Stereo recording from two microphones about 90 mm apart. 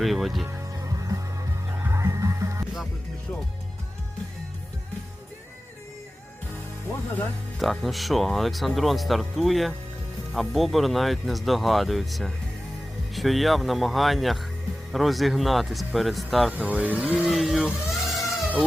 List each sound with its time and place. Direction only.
0.0 s speech: centre (ahead or behind)
0.4 s music: 35° right (ahead or behind)
7.6 s speech: centre (ahead or behind)
16.5 s speech: 15° right (ahead or behind)
17.2 s speech: centre (ahead or behind)
17.8 s a sound: centre (ahead or behind)